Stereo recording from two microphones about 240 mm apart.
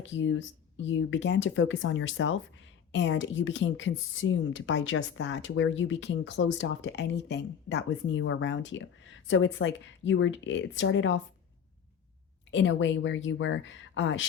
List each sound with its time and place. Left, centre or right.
0.0 s speech: left
12.5 s speech: left